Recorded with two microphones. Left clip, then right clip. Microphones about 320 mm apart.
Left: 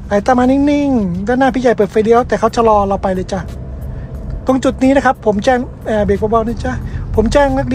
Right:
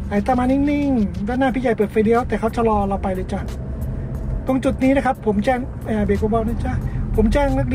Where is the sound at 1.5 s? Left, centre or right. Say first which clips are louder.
Left 7 dB; left.